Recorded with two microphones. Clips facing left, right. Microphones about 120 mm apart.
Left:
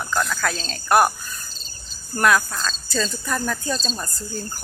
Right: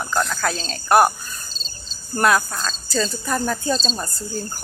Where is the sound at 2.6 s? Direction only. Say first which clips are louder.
Right 2 dB; 15° right (ahead or behind).